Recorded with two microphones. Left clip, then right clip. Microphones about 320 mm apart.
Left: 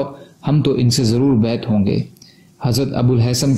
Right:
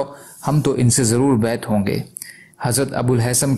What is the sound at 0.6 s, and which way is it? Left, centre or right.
A man's voice, centre.